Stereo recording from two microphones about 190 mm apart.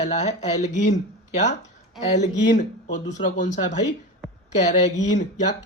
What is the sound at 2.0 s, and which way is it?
Speech, 40° left (ahead or behind).